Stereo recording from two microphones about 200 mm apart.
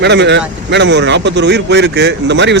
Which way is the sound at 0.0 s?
60° right (ahead or behind).